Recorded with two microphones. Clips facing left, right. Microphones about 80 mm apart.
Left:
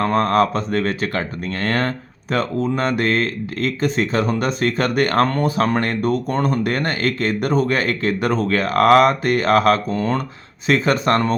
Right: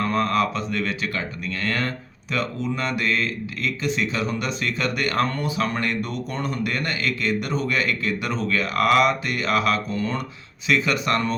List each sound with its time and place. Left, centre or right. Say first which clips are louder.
0.0 s speech: left 5 dB; left